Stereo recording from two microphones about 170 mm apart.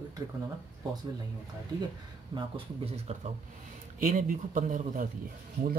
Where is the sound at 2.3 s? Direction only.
35° right (ahead or behind).